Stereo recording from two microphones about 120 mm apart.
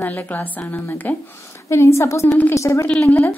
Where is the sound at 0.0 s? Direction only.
15° left (ahead or behind).